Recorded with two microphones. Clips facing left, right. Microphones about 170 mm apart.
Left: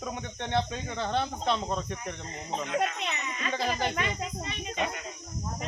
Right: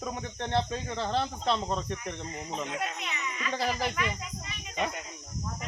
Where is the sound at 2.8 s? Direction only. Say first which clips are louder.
Left 5 dB; 30° left (ahead or behind).